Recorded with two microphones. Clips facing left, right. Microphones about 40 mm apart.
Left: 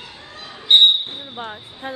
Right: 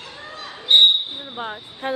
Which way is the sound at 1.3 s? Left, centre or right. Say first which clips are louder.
Right 3 dB; centre.